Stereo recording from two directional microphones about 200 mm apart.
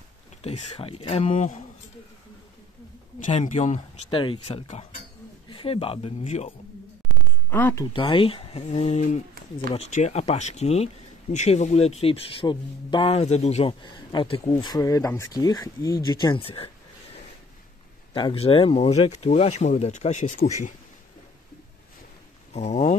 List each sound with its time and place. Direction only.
0.4 s speech: 35° left (ahead or behind)
3.2 s speech: 35° left (ahead or behind)
7.0 s a sound: centre (ahead or behind)
7.4 s speech: 10° left (ahead or behind)
7.8 s speech: 25° left (ahead or behind)
22.5 s speech: 35° left (ahead or behind)